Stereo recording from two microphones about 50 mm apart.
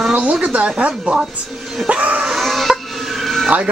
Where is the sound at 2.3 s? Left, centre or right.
Centre.